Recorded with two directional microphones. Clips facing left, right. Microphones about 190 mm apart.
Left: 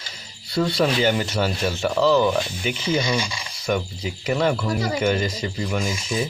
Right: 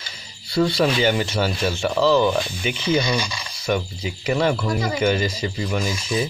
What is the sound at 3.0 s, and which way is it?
Speech, 25° left (ahead or behind).